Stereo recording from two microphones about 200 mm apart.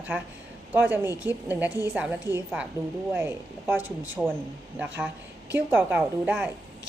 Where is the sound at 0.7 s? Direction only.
10° right (ahead or behind).